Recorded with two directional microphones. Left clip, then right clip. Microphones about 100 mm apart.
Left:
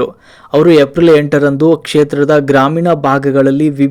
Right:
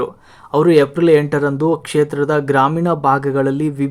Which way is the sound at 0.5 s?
20° left (ahead or behind).